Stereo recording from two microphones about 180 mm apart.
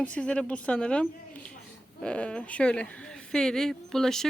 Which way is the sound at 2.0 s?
5° left (ahead or behind).